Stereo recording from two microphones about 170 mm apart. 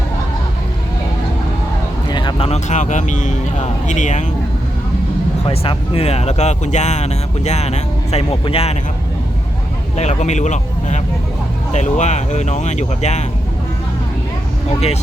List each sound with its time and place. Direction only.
2.0 s speech: 25° left (ahead or behind); by 4.2 s 45° left (ahead or behind)
5.5 s speech: 35° left (ahead or behind)
10.0 s speech: 40° left (ahead or behind)